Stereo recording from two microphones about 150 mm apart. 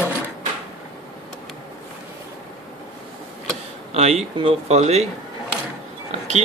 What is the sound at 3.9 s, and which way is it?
A man's voice, 45° right (ahead or behind).